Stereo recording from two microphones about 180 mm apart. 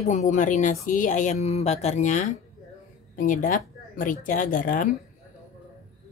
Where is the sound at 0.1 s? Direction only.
45° left (ahead or behind).